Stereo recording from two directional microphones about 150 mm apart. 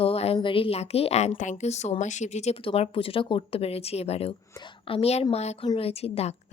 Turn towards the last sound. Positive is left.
turn(degrees=45)  # may be behind; listen again after turning